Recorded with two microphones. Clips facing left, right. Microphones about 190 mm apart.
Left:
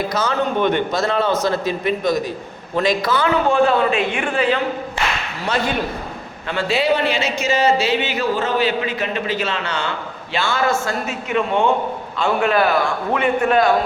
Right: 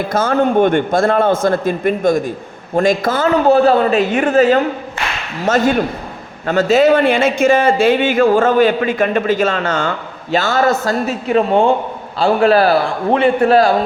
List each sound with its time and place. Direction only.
0.1 s a man's voice: 50° right (ahead or behind); by 13.7 s 35° right (ahead or behind)